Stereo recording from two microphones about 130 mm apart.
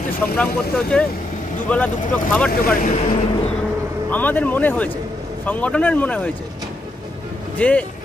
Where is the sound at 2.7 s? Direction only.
75° left (ahead or behind).